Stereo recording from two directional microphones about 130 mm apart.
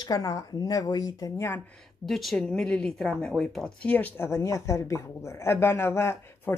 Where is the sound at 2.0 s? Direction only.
Centre (ahead or behind).